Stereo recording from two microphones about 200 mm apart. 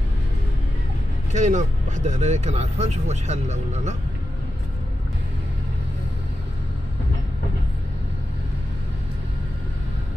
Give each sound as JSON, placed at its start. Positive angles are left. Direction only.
{"t": 1.3, "sound": "speech", "side_deg": -35}